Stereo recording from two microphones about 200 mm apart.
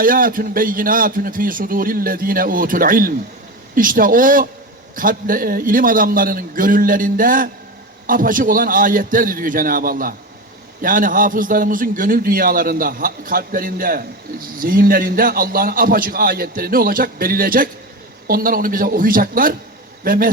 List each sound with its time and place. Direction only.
0.0 s a man's voice: 45° right (ahead or behind)